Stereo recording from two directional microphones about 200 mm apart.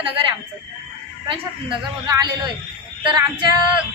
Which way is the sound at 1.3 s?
20° right (ahead or behind).